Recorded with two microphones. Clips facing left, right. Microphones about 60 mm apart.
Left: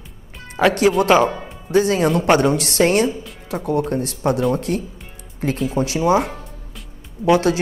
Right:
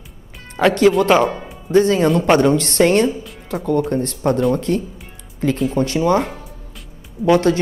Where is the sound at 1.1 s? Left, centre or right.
Centre.